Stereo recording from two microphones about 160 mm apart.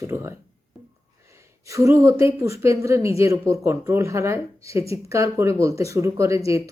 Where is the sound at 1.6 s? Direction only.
20° right (ahead or behind).